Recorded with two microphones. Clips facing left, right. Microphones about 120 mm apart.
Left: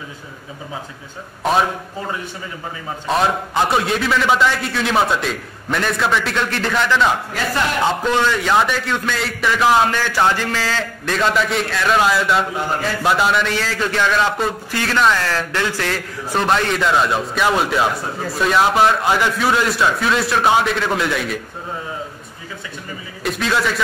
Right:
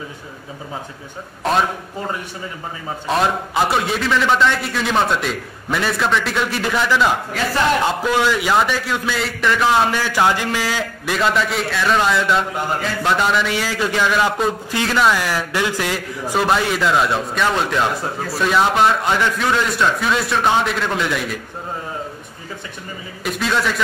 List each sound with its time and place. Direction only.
3.1 s a man's voice: centre (ahead or behind)
9.8 s a man's voice: 10° right (ahead or behind)
13.5 s a man's voice: 10° right (ahead or behind)
14.7 s a man's voice: 20° right (ahead or behind); by 21.4 s centre (ahead or behind)
23.2 s a man's voice: centre (ahead or behind)